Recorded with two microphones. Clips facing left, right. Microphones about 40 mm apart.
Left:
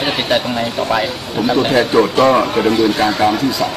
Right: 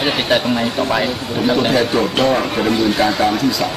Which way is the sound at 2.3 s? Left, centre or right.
Left.